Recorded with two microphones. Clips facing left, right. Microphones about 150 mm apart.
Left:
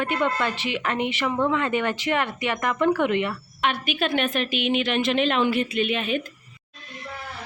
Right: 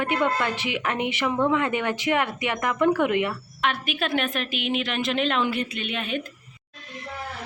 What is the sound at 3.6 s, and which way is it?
A woman's voice, centre (ahead or behind).